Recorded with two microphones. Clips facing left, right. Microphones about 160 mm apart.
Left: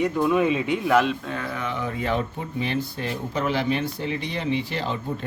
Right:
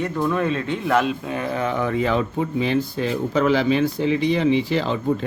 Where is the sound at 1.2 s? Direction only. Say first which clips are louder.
Right 5 dB; 15° right (ahead or behind).